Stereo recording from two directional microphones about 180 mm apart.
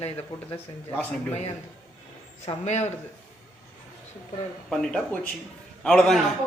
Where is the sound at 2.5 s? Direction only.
40° left (ahead or behind).